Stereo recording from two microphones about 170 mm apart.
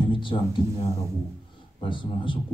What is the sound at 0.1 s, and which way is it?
Speech, 30° left (ahead or behind).